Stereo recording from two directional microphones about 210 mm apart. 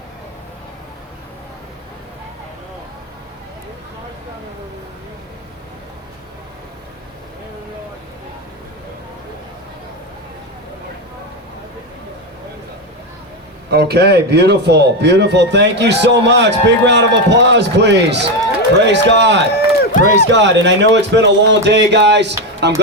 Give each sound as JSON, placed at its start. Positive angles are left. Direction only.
{"t": 13.7, "sound": "a man's voice", "side_deg": -50}
{"t": 19.5, "sound": "run", "side_deg": 45}
{"t": 20.2, "sound": "a man's voice", "side_deg": -55}